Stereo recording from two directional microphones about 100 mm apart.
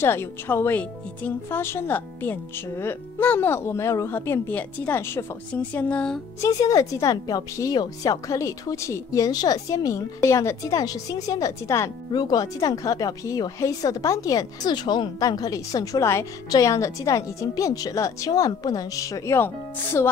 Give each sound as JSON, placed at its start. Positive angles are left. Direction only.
{"t": 0.0, "sound": "speech", "side_deg": 25}
{"t": 6.4, "sound": "speech", "side_deg": 35}
{"t": 12.1, "sound": "speech", "side_deg": 45}